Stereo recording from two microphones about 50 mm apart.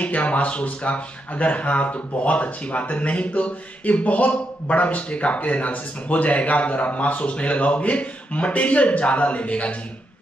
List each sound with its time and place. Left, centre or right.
0.0 s speech: left